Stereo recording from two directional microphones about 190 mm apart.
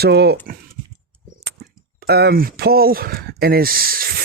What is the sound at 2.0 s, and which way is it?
Speech, 55° right (ahead or behind).